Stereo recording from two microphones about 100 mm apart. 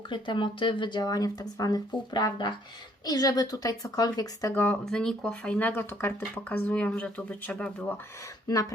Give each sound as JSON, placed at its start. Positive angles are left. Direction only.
{"t": 0.1, "sound": "speech", "side_deg": 55}
{"t": 4.5, "sound": "speech", "side_deg": 20}
{"t": 4.9, "sound": "speech", "side_deg": 5}